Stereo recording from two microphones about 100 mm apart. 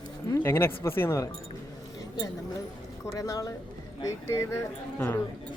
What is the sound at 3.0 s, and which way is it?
Speech, 35° left (ahead or behind).